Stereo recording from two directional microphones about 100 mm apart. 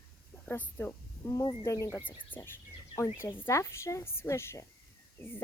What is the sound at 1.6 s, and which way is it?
Speech, 30° left (ahead or behind).